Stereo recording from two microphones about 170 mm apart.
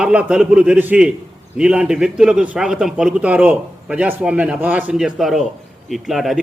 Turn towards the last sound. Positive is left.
turn(degrees=0)  # may be behind; listen again after turning